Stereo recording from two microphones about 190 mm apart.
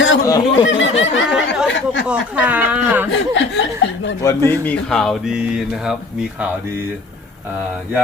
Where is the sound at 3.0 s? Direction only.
70° left (ahead or behind).